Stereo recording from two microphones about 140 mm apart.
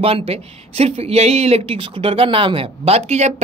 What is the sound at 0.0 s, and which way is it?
Speech, 45° right (ahead or behind).